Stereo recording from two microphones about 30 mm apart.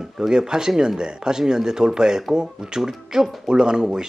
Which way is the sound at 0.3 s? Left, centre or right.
Right.